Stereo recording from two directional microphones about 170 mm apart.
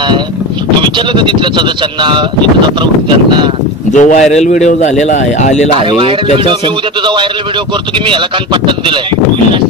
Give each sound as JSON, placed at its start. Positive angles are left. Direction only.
{"t": 0.9, "sound": "speech", "side_deg": -30}
{"t": 3.9, "sound": "speech", "side_deg": 45}